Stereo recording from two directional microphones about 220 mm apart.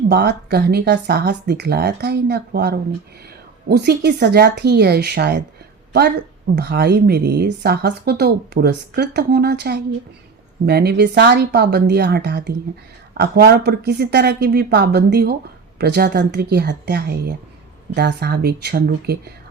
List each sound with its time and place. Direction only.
0.1 s speech: 45° right (ahead or behind)
6.6 s speech: 45° right (ahead or behind)